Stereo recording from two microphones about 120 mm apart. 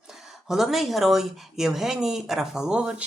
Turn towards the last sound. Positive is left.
turn(degrees=-10)  # may be behind; listen again after turning